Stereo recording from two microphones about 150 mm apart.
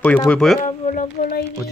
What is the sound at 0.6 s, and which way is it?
Speech, 60° left (ahead or behind).